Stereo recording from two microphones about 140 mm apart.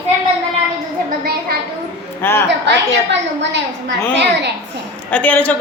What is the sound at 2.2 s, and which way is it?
Speech, 15° left (ahead or behind).